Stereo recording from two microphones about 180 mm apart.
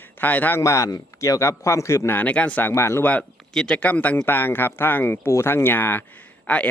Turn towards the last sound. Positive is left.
turn(degrees=10)  # may be behind; listen again after turning